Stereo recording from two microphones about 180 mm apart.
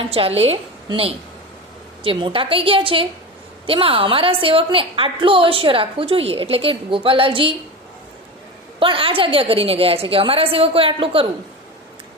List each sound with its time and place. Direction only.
0.0 s a woman's voice: 30° right (ahead or behind)
8.8 s a woman's voice: 30° right (ahead or behind)